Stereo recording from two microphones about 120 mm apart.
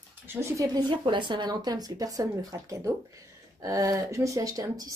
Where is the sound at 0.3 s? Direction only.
20° right (ahead or behind).